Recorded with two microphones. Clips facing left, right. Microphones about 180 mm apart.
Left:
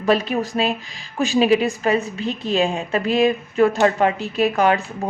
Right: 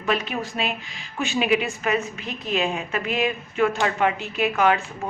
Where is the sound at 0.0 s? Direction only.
35° left (ahead or behind).